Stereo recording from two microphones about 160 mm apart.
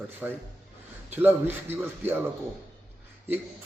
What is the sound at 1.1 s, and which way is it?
Speech, 10° right (ahead or behind).